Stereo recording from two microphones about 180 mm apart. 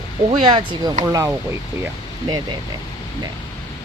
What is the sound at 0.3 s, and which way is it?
Speech, 25° right (ahead or behind).